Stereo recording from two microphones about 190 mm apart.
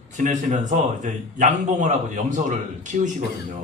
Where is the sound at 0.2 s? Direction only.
40° right (ahead or behind).